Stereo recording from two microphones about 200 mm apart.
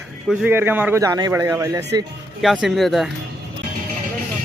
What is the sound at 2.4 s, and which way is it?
Speech, centre (ahead or behind).